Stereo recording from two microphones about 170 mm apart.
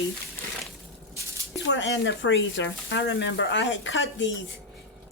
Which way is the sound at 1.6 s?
90° left.